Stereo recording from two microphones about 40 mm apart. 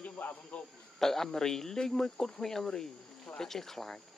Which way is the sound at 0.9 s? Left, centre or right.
Centre.